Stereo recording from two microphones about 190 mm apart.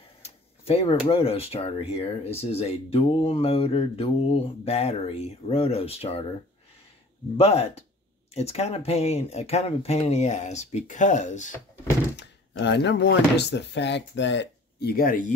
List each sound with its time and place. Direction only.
0.2 s speech: 35° left (ahead or behind)
2.5 s mantra: 30° left (ahead or behind)
7.3 s mantra: 35° left (ahead or behind)
12.2 s speech: 65° left (ahead or behind); by 15.3 s 45° left (ahead or behind)